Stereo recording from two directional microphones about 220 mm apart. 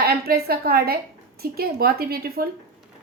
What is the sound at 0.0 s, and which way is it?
A woman's voice, 45° right (ahead or behind).